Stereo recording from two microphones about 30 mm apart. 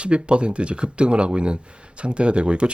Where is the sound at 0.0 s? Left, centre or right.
Right.